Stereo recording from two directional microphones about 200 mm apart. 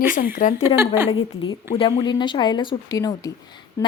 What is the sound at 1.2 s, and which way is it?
Speech, 90° left.